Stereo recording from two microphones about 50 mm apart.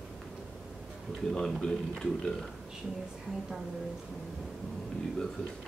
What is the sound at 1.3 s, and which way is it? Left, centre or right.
Speech, centre.